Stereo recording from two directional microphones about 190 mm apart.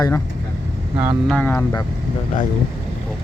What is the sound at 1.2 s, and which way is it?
Speech, 10° left (ahead or behind).